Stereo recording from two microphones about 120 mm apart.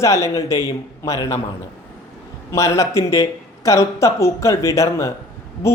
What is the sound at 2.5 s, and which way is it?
Speech, 25° left (ahead or behind).